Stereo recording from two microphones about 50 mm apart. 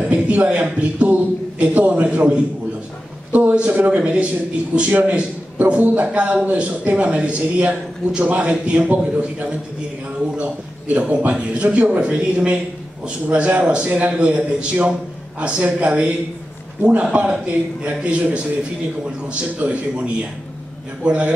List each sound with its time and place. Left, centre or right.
0.0 s a man's voice: right
11.1 s a man's voice: right
19.2 s a man's voice: right